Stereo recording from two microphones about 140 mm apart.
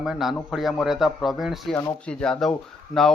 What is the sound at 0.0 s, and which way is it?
Speech, centre (ahead or behind).